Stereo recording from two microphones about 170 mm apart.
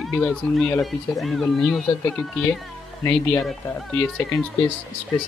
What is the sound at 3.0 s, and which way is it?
Speech, 5° left (ahead or behind).